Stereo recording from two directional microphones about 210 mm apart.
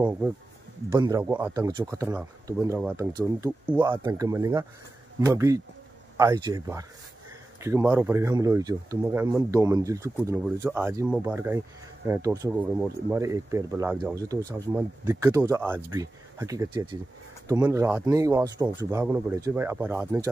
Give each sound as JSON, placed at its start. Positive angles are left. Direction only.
{"t": 0.8, "sound": "speech", "side_deg": -20}
{"t": 3.9, "sound": "speech", "side_deg": -20}